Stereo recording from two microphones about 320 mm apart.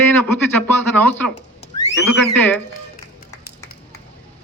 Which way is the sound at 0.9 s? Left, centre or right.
Centre.